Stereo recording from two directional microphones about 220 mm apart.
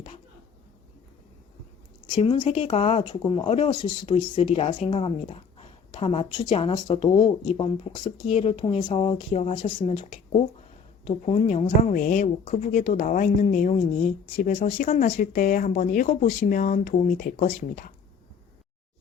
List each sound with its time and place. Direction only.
2.0 s a woman's voice: 25° left (ahead or behind); by 17.9 s 40° left (ahead or behind)